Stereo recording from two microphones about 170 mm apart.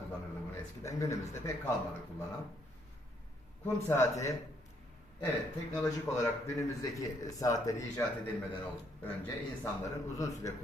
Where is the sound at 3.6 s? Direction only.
15° left (ahead or behind).